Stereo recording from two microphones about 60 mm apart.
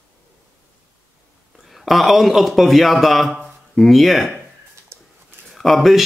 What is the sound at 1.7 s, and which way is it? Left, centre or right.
A man's voice, centre.